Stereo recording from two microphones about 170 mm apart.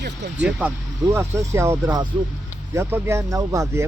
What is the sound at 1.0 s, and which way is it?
Speech, 15° right (ahead or behind).